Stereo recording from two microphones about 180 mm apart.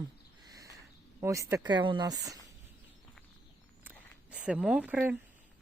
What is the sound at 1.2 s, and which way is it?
Speech, 15° right (ahead or behind).